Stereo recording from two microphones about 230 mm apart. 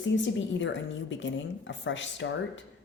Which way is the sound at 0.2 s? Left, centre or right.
Left.